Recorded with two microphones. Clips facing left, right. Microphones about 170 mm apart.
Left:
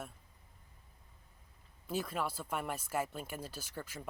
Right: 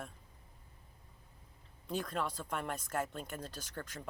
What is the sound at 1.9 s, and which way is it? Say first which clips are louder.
Speech: even; 5° left (ahead or behind).